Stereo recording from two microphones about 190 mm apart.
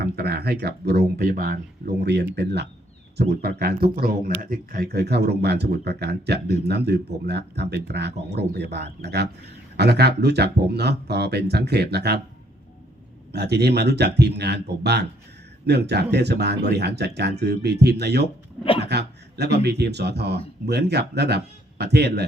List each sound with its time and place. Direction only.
0.0 s speech: 55° right (ahead or behind)
13.3 s speech: 60° right (ahead or behind)
18.6 s speech: 30° left (ahead or behind)
18.9 s speech: 60° right (ahead or behind)